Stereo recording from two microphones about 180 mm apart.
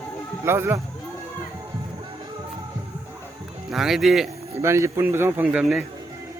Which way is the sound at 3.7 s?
Centre (ahead or behind).